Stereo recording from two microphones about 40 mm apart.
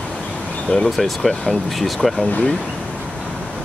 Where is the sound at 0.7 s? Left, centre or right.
Left.